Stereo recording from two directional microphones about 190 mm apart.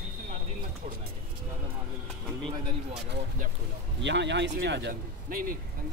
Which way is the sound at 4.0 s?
65° right (ahead or behind).